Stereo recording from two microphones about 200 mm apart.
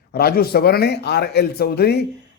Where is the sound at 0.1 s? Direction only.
50° left (ahead or behind).